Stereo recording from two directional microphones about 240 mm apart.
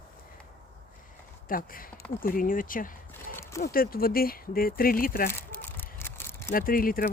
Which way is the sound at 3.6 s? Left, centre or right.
Left.